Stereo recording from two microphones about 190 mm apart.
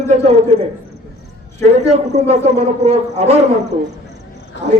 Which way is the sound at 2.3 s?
35° right (ahead or behind).